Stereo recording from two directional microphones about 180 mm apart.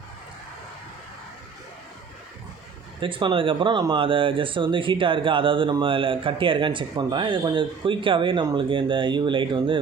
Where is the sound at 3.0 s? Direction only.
30° right (ahead or behind).